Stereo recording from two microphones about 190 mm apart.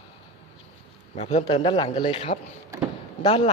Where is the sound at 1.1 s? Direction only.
35° left (ahead or behind).